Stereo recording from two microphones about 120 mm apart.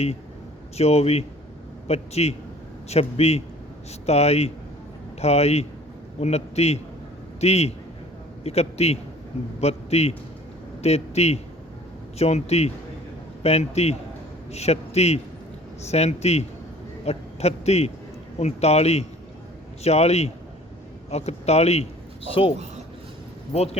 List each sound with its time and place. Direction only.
0.8 s a man's voice: 60° left (ahead or behind)
23.5 s a man's voice: 55° left (ahead or behind)